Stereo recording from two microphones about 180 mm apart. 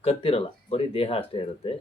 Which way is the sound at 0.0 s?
30° left (ahead or behind).